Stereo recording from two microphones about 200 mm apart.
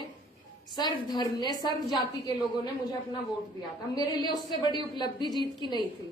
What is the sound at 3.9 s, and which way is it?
A woman's voice, 20° left (ahead or behind).